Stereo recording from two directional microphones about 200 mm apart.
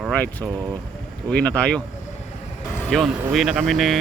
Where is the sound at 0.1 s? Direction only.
5° left (ahead or behind).